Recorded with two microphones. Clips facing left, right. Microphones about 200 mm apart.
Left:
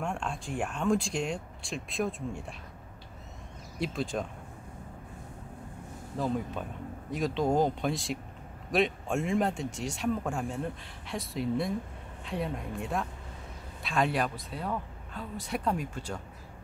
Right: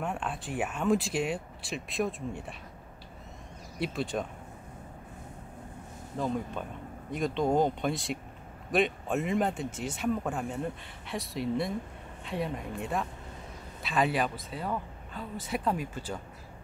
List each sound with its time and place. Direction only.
0.0 s speech: 5° right (ahead or behind)
3.8 s speech: centre (ahead or behind)
6.1 s speech: 5° left (ahead or behind)